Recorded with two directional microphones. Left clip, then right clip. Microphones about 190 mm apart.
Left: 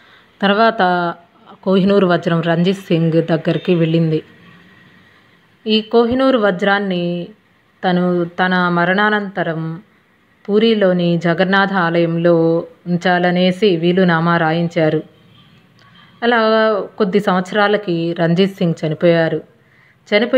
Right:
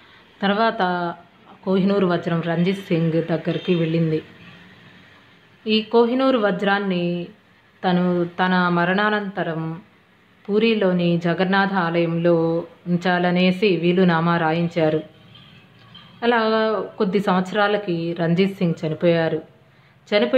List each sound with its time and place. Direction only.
0.4 s speech: 30° left (ahead or behind)
5.6 s speech: 25° left (ahead or behind)
16.2 s speech: 25° left (ahead or behind)